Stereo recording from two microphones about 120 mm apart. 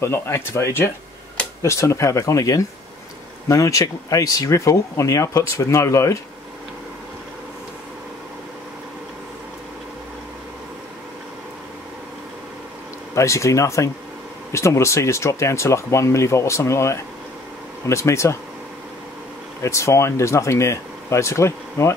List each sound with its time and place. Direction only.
0.0 s speech: 20° left (ahead or behind)
13.1 s speech: 25° left (ahead or behind)
19.6 s speech: 25° left (ahead or behind)